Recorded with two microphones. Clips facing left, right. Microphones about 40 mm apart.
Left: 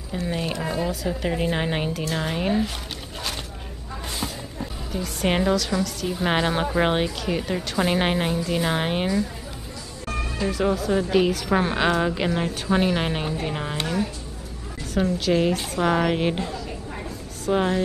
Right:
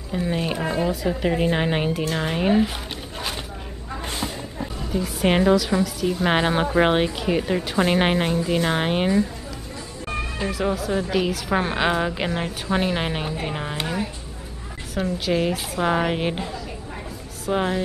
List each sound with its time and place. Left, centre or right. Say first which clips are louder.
0.2 s speech: right 3 dB; centre
4.9 s speech: right 3 dB; centre
10.0 s music: even; right
10.5 s a woman's voice: left 2 dB; centre
15.1 s a woman's voice: even; centre